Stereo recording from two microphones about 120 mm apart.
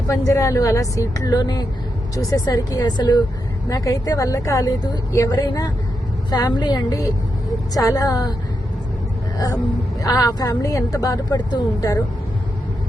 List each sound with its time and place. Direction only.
0.1 s a woman's voice: 25° left (ahead or behind)
10.0 s a woman's voice: 30° left (ahead or behind)